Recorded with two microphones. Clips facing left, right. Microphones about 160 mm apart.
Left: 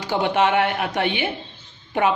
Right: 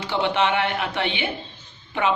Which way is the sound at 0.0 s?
45° left (ahead or behind).